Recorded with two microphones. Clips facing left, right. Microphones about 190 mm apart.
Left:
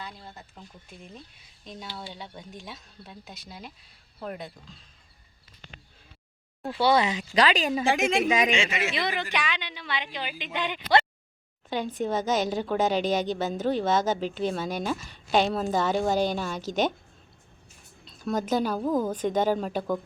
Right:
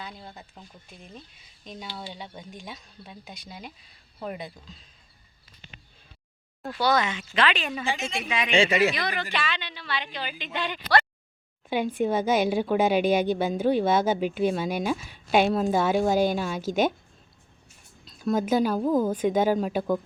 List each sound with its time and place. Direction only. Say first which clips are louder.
0.0 s speech: right 1 dB; centre (ahead or behind)
1.6 s speech: right 1 dB; centre (ahead or behind)
6.6 s speech: left 2 dB; 25° left (ahead or behind)
7.9 s a man's voice: left 8 dB; 90° left
8.2 s speech: left 6 dB; 40° left (ahead or behind)
8.5 s speech: right 7 dB; 35° right (ahead or behind)
9.0 s speech: left 1 dB; 25° left (ahead or behind)
11.7 s a woman's voice: right 3 dB; 10° right (ahead or behind)
18.2 s a woman's voice: right 3 dB; 10° right (ahead or behind)